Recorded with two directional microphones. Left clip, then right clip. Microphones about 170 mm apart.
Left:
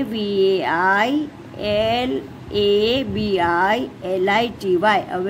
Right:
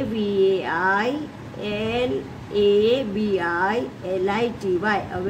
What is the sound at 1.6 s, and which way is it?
A man's voice, 55° left (ahead or behind).